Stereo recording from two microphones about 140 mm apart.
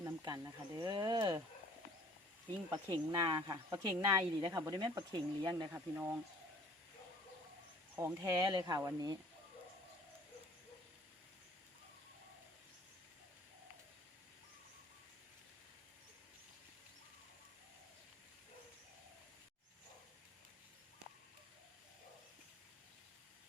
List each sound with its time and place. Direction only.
0.0 s speech: 25° right (ahead or behind)
2.7 s speech: 30° right (ahead or behind)
5.7 s speech: 15° right (ahead or behind)
7.9 s speech: 20° right (ahead or behind)